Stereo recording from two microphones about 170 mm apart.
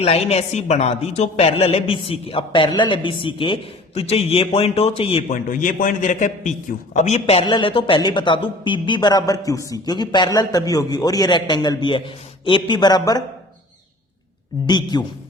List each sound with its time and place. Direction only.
0.0 s a woman's voice: 35° left (ahead or behind)
5.3 s a man's voice: 50° left (ahead or behind)
7.4 s a woman's voice: 30° left (ahead or behind)
14.7 s a woman's voice: 25° left (ahead or behind)